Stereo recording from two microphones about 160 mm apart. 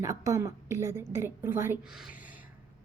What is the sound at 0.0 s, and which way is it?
A woman's voice, 20° right (ahead or behind).